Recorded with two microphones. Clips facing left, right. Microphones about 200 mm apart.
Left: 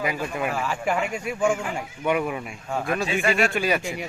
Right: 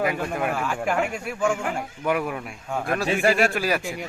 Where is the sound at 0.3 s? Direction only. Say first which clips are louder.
Right 1 dB; centre (ahead or behind).